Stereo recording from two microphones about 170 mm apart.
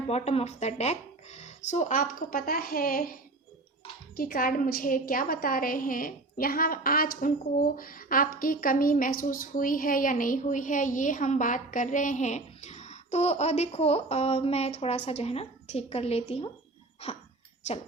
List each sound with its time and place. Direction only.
0.1 s a woman's voice: 40° left (ahead or behind); by 3.1 s 55° left (ahead or behind)
4.2 s a woman's voice: 55° left (ahead or behind); by 17.2 s 35° left (ahead or behind)